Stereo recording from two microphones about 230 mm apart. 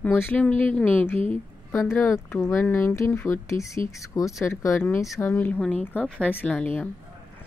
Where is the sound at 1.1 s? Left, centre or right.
Right.